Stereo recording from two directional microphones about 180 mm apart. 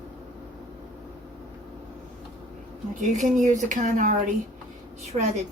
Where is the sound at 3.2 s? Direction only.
40° right (ahead or behind).